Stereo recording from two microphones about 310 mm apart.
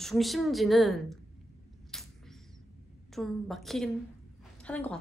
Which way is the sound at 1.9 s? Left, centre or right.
Centre.